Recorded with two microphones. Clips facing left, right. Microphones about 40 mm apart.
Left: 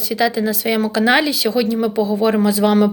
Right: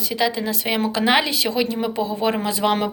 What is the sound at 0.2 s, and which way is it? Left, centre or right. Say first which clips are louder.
A woman's voice: left 4 dB; centre.